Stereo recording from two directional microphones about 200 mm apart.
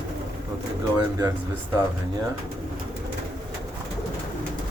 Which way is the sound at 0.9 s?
20° right (ahead or behind).